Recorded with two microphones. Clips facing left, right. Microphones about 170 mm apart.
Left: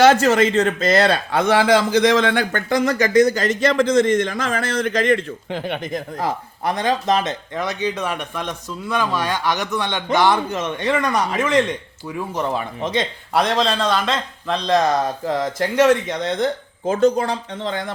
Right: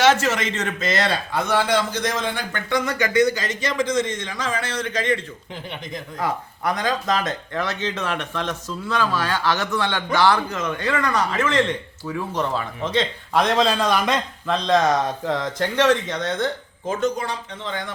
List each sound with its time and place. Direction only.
0.1 s speech: 35° left (ahead or behind)
1.0 s a man's voice: 80° left
2.5 s speech: 40° left (ahead or behind)
5.5 s speech: 75° left (ahead or behind)
6.1 s speech: 30° left (ahead or behind); by 13.4 s 15° left (ahead or behind)
13.4 s speech: 5° right (ahead or behind)
14.4 s speech: centre (ahead or behind)
16.8 s speech: 30° left (ahead or behind)